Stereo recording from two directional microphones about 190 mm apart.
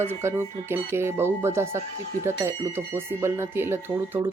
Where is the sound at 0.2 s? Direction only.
15° right (ahead or behind).